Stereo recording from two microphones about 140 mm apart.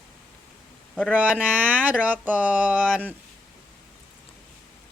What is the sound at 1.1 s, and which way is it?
Speech, 10° right (ahead or behind).